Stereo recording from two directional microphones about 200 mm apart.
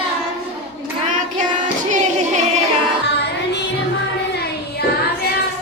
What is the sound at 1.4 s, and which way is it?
Child singing, 40° right (ahead or behind).